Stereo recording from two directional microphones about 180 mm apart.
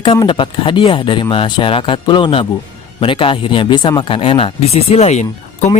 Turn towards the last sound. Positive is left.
turn(degrees=40)  # may be behind; listen again after turning